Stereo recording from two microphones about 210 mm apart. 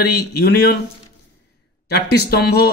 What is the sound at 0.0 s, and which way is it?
Speech, 50° left (ahead or behind).